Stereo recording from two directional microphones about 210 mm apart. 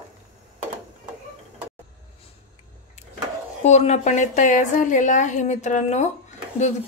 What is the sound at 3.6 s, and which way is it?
A woman's voice, 30° left (ahead or behind).